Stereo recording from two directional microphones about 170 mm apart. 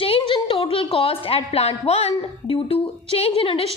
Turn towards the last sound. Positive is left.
turn(degrees=35)  # may be behind; listen again after turning